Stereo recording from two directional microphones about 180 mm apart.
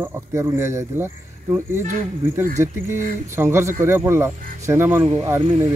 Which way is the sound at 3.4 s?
15° right (ahead or behind).